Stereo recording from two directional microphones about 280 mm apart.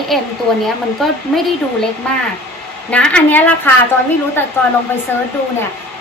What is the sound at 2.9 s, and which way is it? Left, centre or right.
Speech, centre.